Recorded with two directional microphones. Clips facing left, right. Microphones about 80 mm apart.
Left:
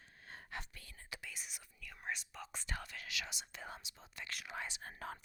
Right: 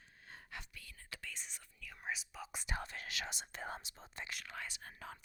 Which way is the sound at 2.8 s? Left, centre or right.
Right.